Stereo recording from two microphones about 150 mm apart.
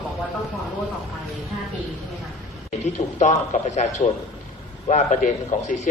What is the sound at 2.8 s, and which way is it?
A man's voice, 55° left (ahead or behind).